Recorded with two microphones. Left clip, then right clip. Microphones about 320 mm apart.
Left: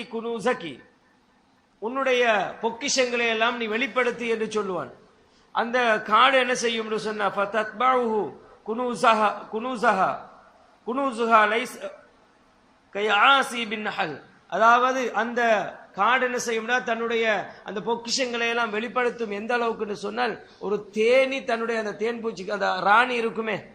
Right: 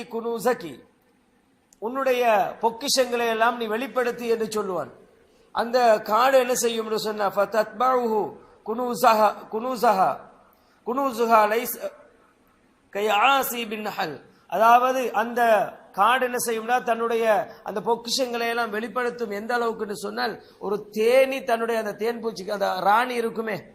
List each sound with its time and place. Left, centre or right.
0.1 s a man's voice: centre
1.8 s a man's voice: centre
12.9 s a man's voice: centre